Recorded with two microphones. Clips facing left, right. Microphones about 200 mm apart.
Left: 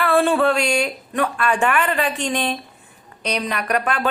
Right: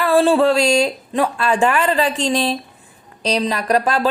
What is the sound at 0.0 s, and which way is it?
A woman's voice, 30° right (ahead or behind).